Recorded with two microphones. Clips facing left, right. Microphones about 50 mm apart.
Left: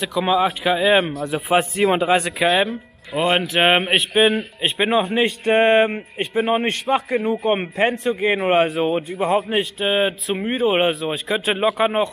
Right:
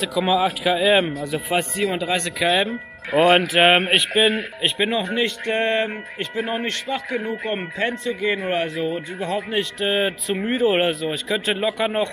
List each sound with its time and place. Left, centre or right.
0.0 s speech: centre
1.9 s a man's voice: left
2.1 s a man's voice: centre
5.5 s a man's voice: left
9.3 s a man's voice: centre
9.8 s speech: centre